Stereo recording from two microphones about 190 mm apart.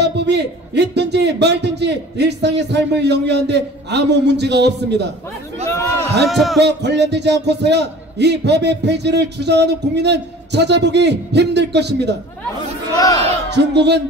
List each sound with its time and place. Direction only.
0.0 s a man's voice: 65° right (ahead or behind)
5.7 s a man's voice: 15° left (ahead or behind)
6.2 s speech: centre (ahead or behind)
6.6 s a man's voice: 65° right (ahead or behind)
12.9 s speech: 20° left (ahead or behind)
13.5 s a man's voice: 65° right (ahead or behind)